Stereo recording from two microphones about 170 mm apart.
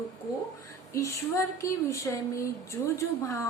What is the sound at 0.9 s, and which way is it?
A woman's voice, 15° left (ahead or behind).